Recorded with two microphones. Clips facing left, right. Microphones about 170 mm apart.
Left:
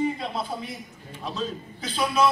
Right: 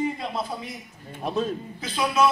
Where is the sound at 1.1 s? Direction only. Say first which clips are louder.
Right 5 dB; 55° right (ahead or behind).